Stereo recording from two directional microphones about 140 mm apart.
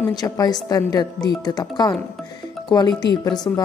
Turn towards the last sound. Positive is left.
turn(degrees=30)  # may be behind; listen again after turning